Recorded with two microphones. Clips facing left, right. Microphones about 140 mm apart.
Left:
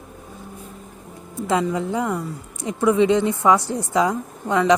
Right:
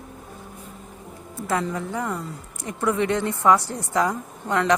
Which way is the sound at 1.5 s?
15° left (ahead or behind).